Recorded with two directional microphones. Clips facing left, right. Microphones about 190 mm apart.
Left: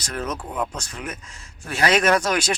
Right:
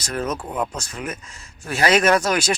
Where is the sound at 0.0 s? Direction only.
5° right (ahead or behind).